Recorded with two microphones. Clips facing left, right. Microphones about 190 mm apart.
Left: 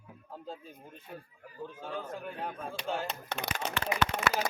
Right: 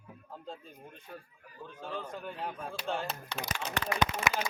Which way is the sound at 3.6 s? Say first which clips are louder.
Even; 65° left (ahead or behind).